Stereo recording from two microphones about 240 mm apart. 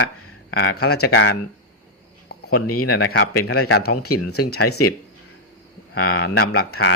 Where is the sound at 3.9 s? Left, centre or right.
Left.